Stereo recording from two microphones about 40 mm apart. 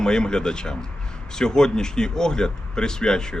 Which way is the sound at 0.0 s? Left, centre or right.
Centre.